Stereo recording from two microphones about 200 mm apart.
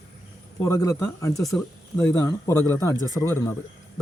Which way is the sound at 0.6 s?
15° left (ahead or behind).